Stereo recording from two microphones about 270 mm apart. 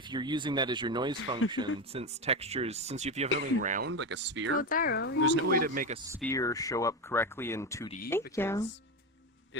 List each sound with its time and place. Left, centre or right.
0.1 s speech: centre
3.9 s speech: right
4.5 s speech: left
5.2 s speech: right
6.2 s speech: centre